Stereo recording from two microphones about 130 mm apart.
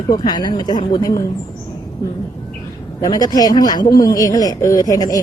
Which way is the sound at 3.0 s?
30° left (ahead or behind).